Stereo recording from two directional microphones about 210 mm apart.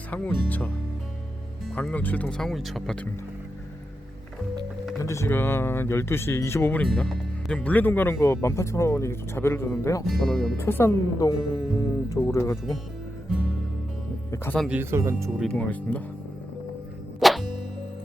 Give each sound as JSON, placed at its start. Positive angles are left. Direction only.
{"t": 0.1, "sound": "speech", "side_deg": 5}
{"t": 1.7, "sound": "speech", "side_deg": 5}
{"t": 5.0, "sound": "speech", "side_deg": 15}
{"t": 10.1, "sound": "speech", "side_deg": 0}
{"t": 10.6, "sound": "speech", "side_deg": 10}
{"t": 14.3, "sound": "speech", "side_deg": 10}
{"t": 14.7, "sound": "speech", "side_deg": -10}
{"t": 15.4, "sound": "speech", "side_deg": 5}
{"t": 17.2, "sound": "music", "side_deg": 0}